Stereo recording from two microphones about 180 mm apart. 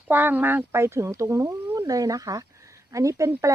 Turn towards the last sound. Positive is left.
turn(degrees=-15)  # may be behind; listen again after turning